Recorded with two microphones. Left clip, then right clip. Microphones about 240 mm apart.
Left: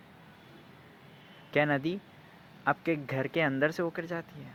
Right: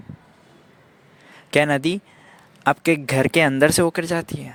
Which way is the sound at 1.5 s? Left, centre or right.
Right.